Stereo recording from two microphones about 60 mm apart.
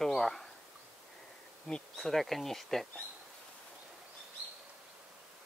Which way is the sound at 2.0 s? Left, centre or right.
Centre.